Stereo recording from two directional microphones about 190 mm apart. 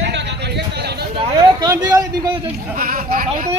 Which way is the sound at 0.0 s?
65° right (ahead or behind).